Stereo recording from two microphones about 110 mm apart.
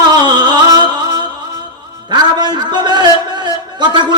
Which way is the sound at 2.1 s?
40° right (ahead or behind).